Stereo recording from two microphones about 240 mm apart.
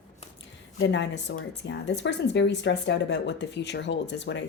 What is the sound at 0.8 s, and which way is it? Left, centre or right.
Speech, left.